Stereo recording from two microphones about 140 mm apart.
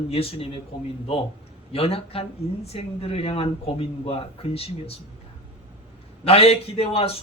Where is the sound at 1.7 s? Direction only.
45° left (ahead or behind).